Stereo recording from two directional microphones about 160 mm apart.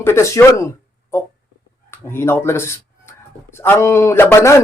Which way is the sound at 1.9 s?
15° left (ahead or behind).